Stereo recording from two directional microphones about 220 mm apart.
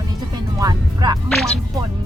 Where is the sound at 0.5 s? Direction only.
20° right (ahead or behind).